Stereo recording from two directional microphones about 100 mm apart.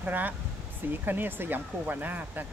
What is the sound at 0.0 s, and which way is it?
Speech, 15° right (ahead or behind).